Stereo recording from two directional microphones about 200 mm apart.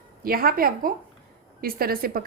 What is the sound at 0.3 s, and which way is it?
A woman's voice, 45° right (ahead or behind).